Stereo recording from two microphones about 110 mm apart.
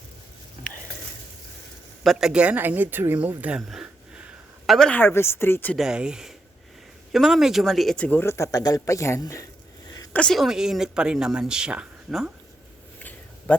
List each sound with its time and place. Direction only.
2.0 s speech: 5° right (ahead or behind)
4.6 s a woman's voice: centre (ahead or behind)
4.9 s speech: 20° left (ahead or behind)
5.7 s speech: 5° right (ahead or behind)
8.0 s speech: 20° left (ahead or behind)
10.1 s speech: 10° left (ahead or behind)
10.3 s speech: centre (ahead or behind)
13.0 s a sound: 15° left (ahead or behind)